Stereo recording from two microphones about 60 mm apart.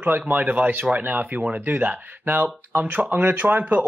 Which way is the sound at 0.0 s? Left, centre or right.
Right.